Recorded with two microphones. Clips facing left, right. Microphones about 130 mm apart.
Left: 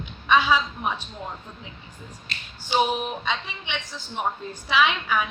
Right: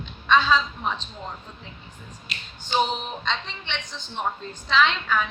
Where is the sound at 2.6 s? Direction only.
10° left (ahead or behind).